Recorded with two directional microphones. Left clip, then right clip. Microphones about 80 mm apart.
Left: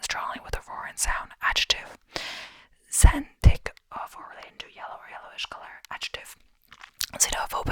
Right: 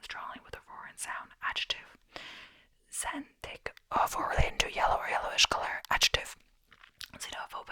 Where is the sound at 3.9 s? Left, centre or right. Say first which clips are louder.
Right 13 dB; right.